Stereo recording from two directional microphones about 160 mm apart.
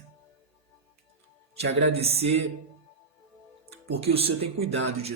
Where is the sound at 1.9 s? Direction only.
40° right (ahead or behind).